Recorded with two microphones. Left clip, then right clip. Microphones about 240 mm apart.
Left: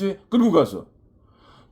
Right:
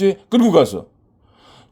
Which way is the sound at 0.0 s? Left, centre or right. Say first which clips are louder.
Right 6 dB; right.